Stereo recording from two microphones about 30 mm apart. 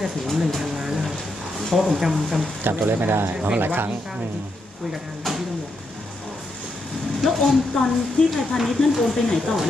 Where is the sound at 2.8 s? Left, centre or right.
Right.